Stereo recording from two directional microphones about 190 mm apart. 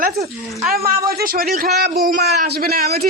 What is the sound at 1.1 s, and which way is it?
Speech, 50° right (ahead or behind).